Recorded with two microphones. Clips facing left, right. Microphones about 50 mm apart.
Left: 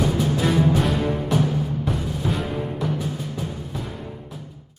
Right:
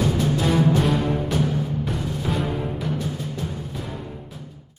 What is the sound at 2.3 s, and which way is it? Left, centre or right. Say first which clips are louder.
Music: right 1 dB; centre.